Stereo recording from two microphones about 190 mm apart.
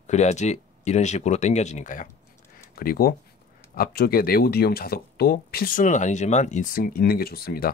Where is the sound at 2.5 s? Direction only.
50° left (ahead or behind).